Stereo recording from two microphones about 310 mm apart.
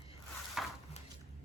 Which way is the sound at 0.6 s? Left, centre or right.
Centre.